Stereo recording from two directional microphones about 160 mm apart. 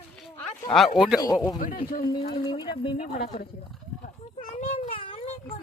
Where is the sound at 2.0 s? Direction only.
30° left (ahead or behind).